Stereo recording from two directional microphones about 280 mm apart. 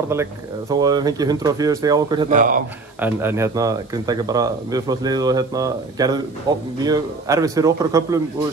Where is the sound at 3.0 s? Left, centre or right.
Centre.